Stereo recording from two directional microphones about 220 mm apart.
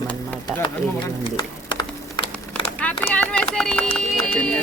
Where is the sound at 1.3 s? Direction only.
20° left (ahead or behind).